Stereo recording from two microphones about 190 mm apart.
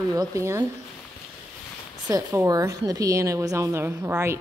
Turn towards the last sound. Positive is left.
turn(degrees=-10)  # may be behind; listen again after turning